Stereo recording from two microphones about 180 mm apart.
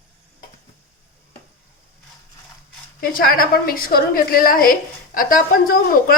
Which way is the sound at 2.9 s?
55° left (ahead or behind).